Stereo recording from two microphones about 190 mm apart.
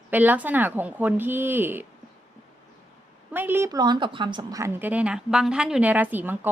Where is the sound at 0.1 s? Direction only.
10° right (ahead or behind).